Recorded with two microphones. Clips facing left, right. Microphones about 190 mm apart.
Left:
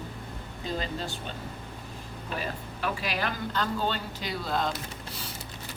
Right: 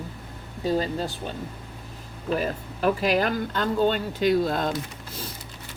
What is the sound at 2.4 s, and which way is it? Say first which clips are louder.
Speech: right 7 dB; 50° right (ahead or behind).